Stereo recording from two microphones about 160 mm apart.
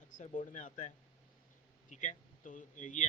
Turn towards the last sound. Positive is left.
turn(degrees=50)  # may be behind; listen again after turning